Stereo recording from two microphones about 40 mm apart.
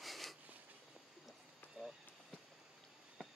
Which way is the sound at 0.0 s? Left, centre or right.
Centre.